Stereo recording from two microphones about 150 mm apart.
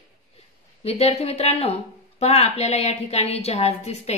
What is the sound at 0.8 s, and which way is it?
A woman's voice, 40° left (ahead or behind).